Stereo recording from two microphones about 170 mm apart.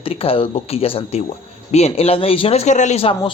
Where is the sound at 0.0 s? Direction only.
35° left (ahead or behind).